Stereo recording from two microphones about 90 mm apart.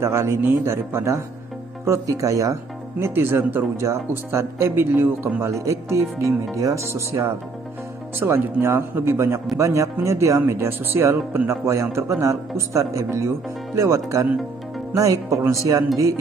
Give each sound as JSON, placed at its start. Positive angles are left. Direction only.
{"t": 0.0, "sound": "speech", "side_deg": -30}
{"t": 5.5, "sound": "speech", "side_deg": -35}
{"t": 10.4, "sound": "speech", "side_deg": -25}